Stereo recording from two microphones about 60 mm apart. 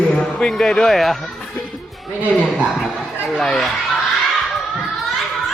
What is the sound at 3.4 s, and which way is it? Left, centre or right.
Speech, centre.